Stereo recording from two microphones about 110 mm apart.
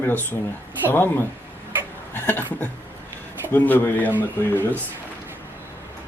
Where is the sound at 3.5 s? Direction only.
15° left (ahead or behind).